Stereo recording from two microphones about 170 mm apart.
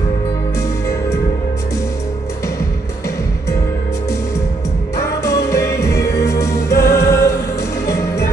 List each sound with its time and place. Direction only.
4.9 s music: 15° left (ahead or behind)